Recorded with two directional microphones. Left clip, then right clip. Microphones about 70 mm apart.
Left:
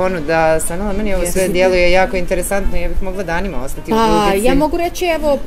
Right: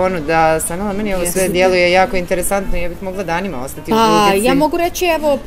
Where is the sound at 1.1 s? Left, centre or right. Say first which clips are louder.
Left 1 dB; right.